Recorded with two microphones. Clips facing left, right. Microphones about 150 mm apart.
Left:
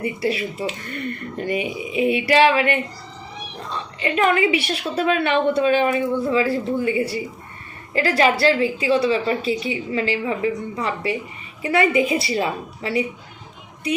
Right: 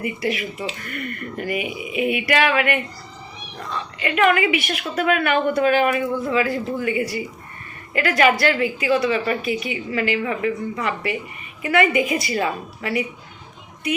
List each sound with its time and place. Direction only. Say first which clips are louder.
0.0 s a woman's voice: left 2 dB; 30° left (ahead or behind)